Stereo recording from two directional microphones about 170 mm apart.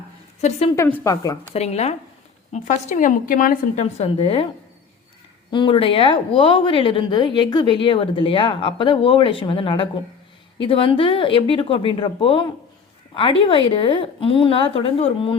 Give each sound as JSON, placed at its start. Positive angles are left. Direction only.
{"t": 0.8, "sound": "a woman's voice", "side_deg": 15}
{"t": 1.5, "sound": "a woman's voice", "side_deg": 40}
{"t": 5.5, "sound": "a woman's voice", "side_deg": 30}
{"t": 13.5, "sound": "a woman's voice", "side_deg": 30}